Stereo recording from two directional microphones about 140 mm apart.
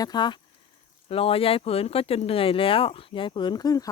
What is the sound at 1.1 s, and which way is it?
Speech, 45° left (ahead or behind).